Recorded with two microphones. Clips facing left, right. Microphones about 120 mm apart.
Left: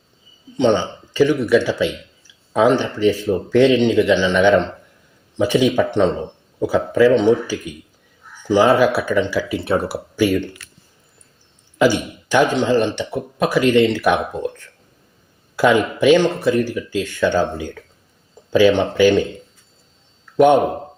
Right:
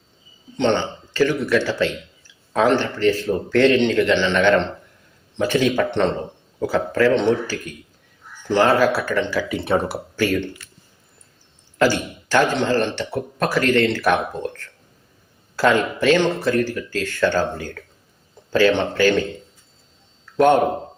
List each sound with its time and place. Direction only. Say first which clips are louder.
0.5 s a man's voice: left 3 dB; 10° left (ahead or behind)
11.8 s a man's voice: left 3 dB; 15° left (ahead or behind)
20.3 s a man's voice: left 3 dB; 15° left (ahead or behind)